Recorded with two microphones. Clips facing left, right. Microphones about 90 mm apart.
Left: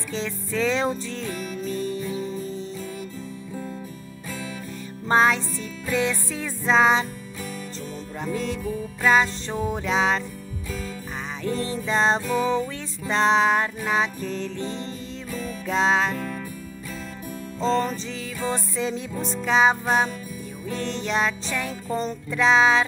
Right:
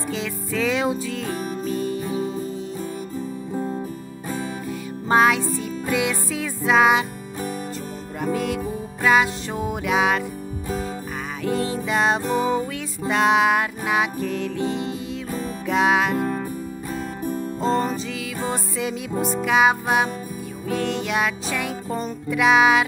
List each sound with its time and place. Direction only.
0.1 s music: 10° right (ahead or behind)
2.0 s music: 45° right (ahead or behind)
5.0 s music: 10° right (ahead or behind)
9.0 s music: 10° right (ahead or behind)
11.4 s music: 10° right (ahead or behind)
16.2 s music: 35° right (ahead or behind)
18.5 s music: 10° right (ahead or behind)